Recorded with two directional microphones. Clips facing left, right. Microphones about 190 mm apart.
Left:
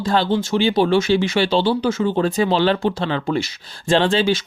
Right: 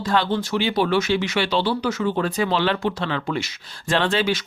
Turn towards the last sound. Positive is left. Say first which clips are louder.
# left 4 dB
turn(degrees=30)  # may be behind; listen again after turning